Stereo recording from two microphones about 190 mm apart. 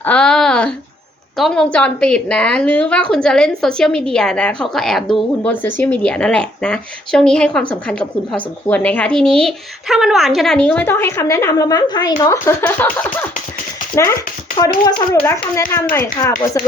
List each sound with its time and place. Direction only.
0.0 s a woman's voice: 5° left (ahead or behind)